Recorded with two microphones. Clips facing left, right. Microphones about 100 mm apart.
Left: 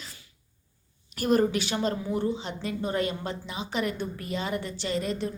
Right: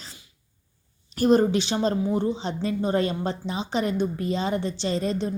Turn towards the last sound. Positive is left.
turn(degrees=-30)  # may be behind; listen again after turning